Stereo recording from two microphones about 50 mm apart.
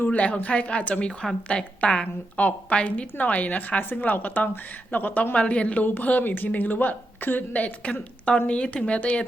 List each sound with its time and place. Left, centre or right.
0.0 s a woman's voice: left